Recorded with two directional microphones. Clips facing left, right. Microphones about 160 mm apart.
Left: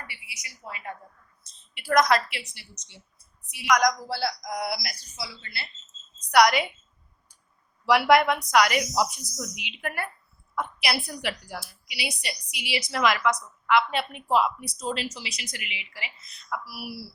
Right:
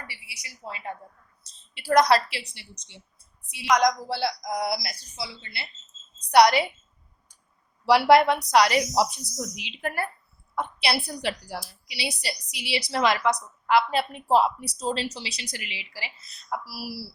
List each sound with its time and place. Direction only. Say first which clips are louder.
0.1 s a woman's voice: even; 30° right (ahead or behind)
7.9 s speech: right 2 dB; 30° right (ahead or behind)